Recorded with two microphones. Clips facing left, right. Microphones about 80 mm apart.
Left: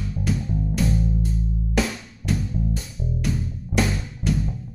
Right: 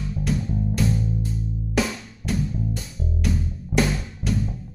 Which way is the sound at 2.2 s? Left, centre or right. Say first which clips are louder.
Left 1 dB; centre.